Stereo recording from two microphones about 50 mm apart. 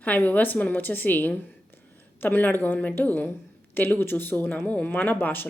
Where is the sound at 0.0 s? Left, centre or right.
Left.